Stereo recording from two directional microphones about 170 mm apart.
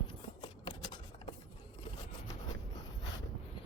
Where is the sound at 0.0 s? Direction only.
25° left (ahead or behind).